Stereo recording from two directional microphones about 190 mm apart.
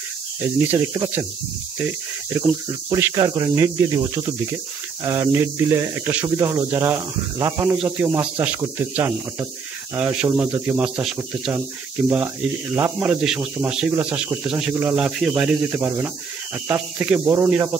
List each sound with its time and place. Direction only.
0.7 s speech: 15° right (ahead or behind)
2.9 s speech: 15° right (ahead or behind)
5.0 s speech: 15° right (ahead or behind)
12.7 s speech: 10° right (ahead or behind)